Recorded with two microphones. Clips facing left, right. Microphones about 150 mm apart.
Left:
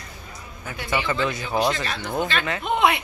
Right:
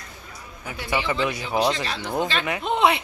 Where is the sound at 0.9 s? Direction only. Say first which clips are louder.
Even; 5° right (ahead or behind).